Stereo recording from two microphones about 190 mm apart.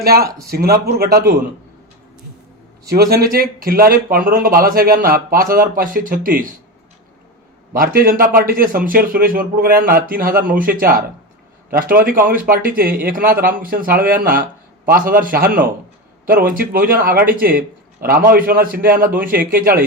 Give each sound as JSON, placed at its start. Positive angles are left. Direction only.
{"t": 0.0, "sound": "a man's voice", "side_deg": -55}
{"t": 2.8, "sound": "a man's voice", "side_deg": -55}
{"t": 7.7, "sound": "a man's voice", "side_deg": -50}